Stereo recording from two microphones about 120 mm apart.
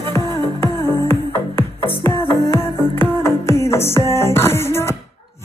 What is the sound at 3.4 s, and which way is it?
Music, 20° left (ahead or behind).